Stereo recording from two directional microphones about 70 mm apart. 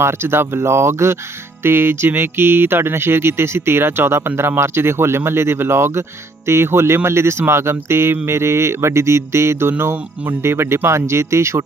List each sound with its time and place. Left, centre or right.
0.0 s speech: right